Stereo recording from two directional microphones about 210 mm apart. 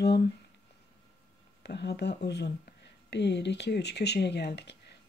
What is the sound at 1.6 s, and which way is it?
Speech, 55° left (ahead or behind).